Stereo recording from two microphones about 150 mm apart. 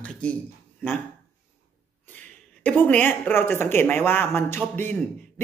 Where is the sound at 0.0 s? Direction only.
10° left (ahead or behind).